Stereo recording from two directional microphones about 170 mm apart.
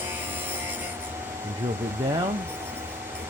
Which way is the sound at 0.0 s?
10° right (ahead or behind).